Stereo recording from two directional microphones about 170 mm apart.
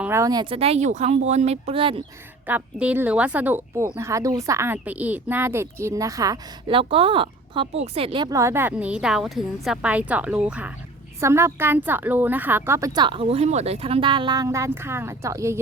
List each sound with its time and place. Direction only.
0.0 s speech: 15° right (ahead or behind)
0.5 s speech: 35° right (ahead or behind)
2.5 s speech: 10° right (ahead or behind)